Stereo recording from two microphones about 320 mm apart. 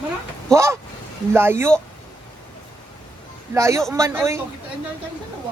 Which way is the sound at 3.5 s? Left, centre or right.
Centre.